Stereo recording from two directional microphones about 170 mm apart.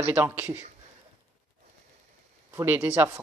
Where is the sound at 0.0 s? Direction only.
10° right (ahead or behind).